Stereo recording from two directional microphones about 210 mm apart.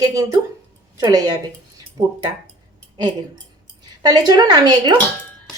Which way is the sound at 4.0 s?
20° right (ahead or behind).